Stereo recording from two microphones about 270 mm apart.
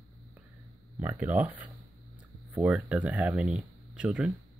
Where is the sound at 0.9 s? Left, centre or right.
Centre.